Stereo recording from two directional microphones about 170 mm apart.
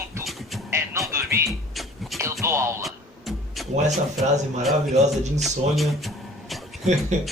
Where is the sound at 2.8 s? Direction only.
Centre (ahead or behind).